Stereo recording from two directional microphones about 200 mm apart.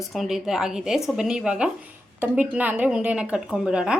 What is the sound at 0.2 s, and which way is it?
A woman's voice, centre (ahead or behind).